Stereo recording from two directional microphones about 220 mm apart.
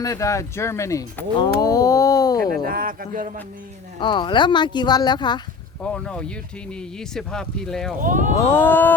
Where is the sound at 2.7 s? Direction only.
40° right (ahead or behind).